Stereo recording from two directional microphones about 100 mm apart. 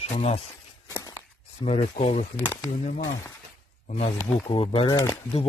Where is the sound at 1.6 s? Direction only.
90° left.